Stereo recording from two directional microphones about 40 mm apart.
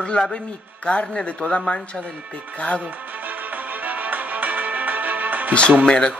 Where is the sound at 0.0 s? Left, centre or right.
Left.